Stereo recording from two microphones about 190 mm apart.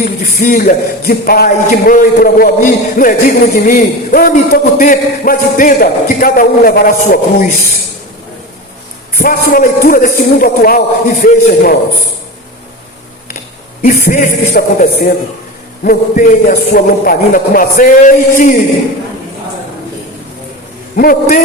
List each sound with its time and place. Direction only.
0.0 s speech: 45° left (ahead or behind)
9.1 s speech: 50° left (ahead or behind)
13.8 s speech: 45° left (ahead or behind)
20.9 s speech: 50° left (ahead or behind)